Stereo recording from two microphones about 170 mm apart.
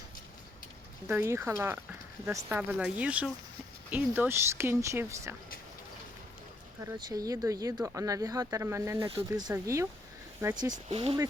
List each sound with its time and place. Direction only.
1.0 s speech: 15° right (ahead or behind)
6.8 s speech: 20° right (ahead or behind)
10.7 s speech: 35° right (ahead or behind)